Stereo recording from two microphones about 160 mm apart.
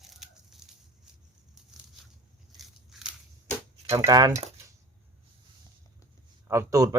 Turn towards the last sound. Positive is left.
turn(degrees=-20)  # may be behind; listen again after turning